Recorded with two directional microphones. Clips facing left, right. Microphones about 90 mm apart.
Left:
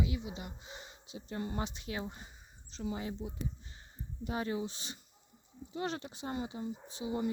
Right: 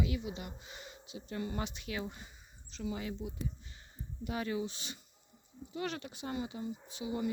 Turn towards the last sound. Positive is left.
turn(degrees=30)  # may be behind; listen again after turning